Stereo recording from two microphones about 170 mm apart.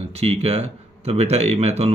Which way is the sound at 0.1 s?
35° right (ahead or behind).